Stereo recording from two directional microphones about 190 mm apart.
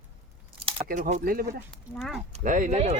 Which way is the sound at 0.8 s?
45° right (ahead or behind).